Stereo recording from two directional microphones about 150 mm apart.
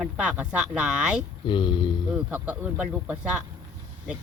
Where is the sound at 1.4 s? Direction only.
35° left (ahead or behind).